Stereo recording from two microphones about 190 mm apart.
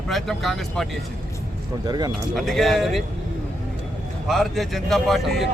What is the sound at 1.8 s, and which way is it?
Speech, 20° right (ahead or behind).